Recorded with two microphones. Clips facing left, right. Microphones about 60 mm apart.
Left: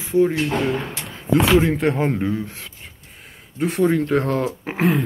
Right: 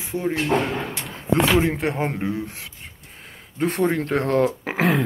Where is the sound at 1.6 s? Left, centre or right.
Centre.